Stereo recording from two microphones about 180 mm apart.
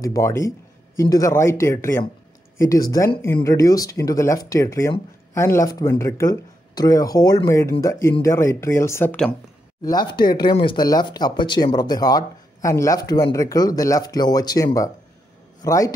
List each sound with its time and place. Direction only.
0.0 s speech: 15° left (ahead or behind)
9.8 s speech: 25° left (ahead or behind)